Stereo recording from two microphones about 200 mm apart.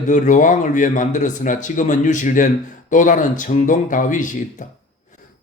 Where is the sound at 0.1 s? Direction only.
40° left (ahead or behind).